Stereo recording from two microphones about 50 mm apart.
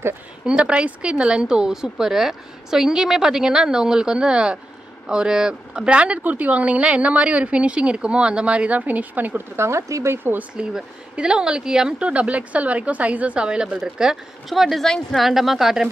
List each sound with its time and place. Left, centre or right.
0.5 s speech: right
6.2 s a woman's voice: right
9.6 s speech: right
10.5 s speech: centre
12.1 s a woman's voice: right
14.5 s speech: centre
15.2 s speech: centre